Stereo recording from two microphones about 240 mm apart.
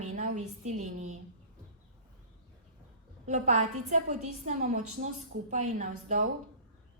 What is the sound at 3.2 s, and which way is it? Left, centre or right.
A woman's voice, right.